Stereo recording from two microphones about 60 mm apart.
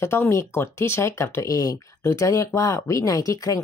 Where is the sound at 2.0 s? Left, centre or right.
Left.